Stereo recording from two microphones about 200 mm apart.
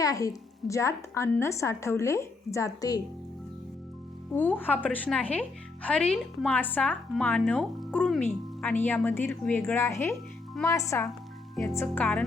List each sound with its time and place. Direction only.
0.0 s speech: 15° left (ahead or behind)
4.4 s speech: 10° left (ahead or behind)